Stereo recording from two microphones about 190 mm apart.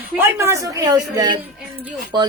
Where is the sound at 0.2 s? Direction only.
15° right (ahead or behind).